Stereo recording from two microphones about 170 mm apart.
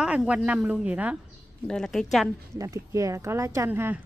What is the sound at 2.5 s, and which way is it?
Speech, 20° right (ahead or behind).